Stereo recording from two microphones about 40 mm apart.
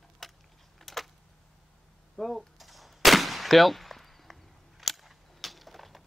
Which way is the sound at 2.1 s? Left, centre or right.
Centre.